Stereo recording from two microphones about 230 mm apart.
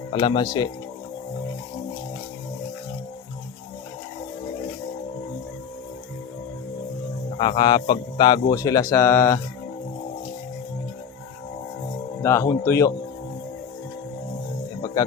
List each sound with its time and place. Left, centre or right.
0.1 s speech: left
7.3 s speech: left
12.2 s speech: centre